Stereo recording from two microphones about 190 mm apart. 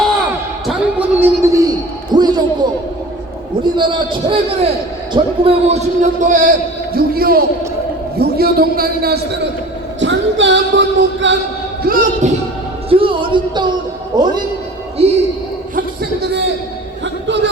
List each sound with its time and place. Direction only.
0.7 s a sound: 10° right (ahead or behind)
3.8 s a man's voice: 25° right (ahead or behind); by 9.4 s 55° right (ahead or behind)
10.0 s music: 75° right (ahead or behind)
11.9 s a man's voice: 45° right (ahead or behind)
12.9 s a man's voice: 25° right (ahead or behind)
15.0 s a man's voice: 30° right (ahead or behind)
17.2 s a sound: 70° right (ahead or behind)